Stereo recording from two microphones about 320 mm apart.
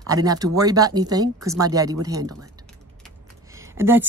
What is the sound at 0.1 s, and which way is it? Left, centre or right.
Speech, centre.